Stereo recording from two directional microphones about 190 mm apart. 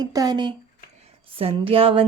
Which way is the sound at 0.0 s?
20° right (ahead or behind).